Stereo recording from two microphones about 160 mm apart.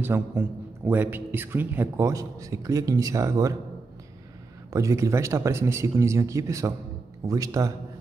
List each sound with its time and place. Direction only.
0.0 s a man's voice: 15° right (ahead or behind)
4.7 s speech: 20° right (ahead or behind)